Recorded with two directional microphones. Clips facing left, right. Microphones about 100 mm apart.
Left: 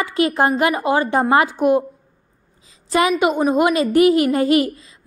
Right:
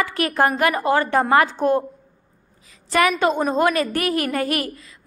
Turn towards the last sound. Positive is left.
turn(degrees=20)  # may be behind; listen again after turning